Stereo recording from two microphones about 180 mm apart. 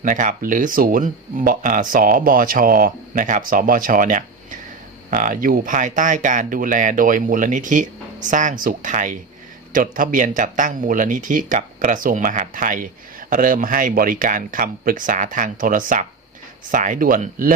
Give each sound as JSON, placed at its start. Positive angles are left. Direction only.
{"t": 0.0, "sound": "speech", "side_deg": -45}